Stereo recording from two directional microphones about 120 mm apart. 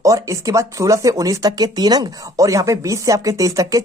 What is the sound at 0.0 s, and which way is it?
Speech, 25° right (ahead or behind).